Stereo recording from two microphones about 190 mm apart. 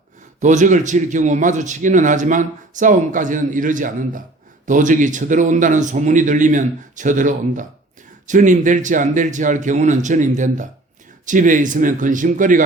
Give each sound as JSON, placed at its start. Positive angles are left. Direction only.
{"t": 0.3, "sound": "a man's voice", "side_deg": -40}